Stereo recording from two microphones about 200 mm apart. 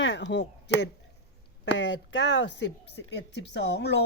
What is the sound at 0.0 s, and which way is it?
Speech, 65° left (ahead or behind).